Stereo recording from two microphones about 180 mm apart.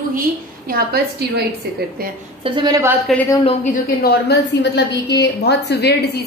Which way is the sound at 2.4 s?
25° right (ahead or behind).